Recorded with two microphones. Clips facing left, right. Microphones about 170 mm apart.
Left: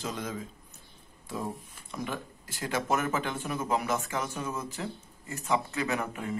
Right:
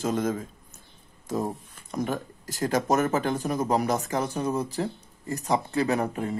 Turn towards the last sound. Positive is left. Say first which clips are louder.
# right 6 dB
turn(degrees=-35)  # may be behind; listen again after turning